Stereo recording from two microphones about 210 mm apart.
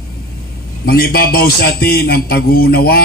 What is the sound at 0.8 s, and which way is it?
A man's voice, 45° left (ahead or behind).